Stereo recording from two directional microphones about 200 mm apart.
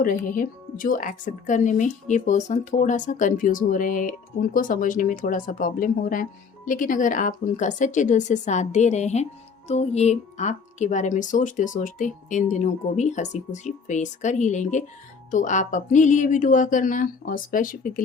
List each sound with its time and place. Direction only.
0.0 s speech: 45° left (ahead or behind)